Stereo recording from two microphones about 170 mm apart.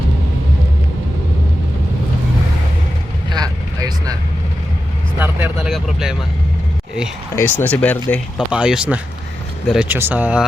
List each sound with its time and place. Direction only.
3.2 s vehicle: 25° right (ahead or behind)
5.2 s vehicle: 5° right (ahead or behind)
7.3 s speech: 10° left (ahead or behind)
8.4 s speech: 5° right (ahead or behind)